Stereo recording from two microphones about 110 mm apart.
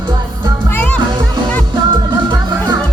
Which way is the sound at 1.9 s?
45° right (ahead or behind).